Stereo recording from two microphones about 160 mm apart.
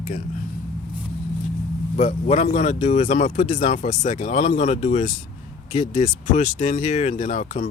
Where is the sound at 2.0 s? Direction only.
45° left (ahead or behind).